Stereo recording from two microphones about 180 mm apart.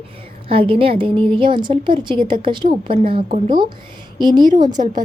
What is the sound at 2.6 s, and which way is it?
Speech, 45° right (ahead or behind).